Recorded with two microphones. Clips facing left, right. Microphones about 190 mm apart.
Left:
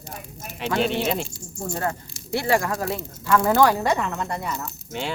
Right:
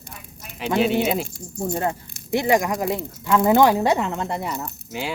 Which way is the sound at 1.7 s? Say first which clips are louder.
Right 1 dB; 20° right (ahead or behind).